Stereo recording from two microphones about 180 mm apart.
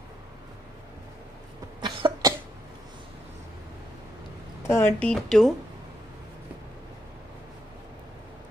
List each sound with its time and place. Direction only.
1.8 s cough: 25° right (ahead or behind)
4.6 s speech: 15° left (ahead or behind)